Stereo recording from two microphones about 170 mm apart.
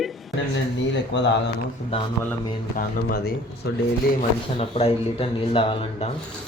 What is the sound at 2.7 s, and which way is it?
Speech, 60° left (ahead or behind).